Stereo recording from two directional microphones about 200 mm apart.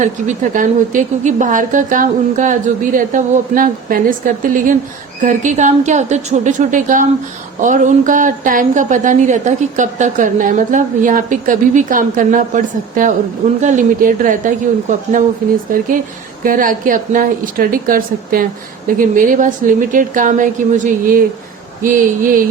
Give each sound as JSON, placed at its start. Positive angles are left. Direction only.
{"t": 0.0, "sound": "speech", "side_deg": -40}
{"t": 16.4, "sound": "a woman's voice", "side_deg": -45}